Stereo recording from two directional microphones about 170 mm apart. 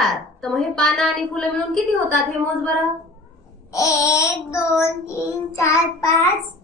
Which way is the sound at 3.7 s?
20° left (ahead or behind).